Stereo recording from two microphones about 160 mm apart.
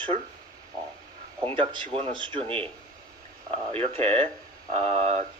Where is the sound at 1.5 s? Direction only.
35° right (ahead or behind).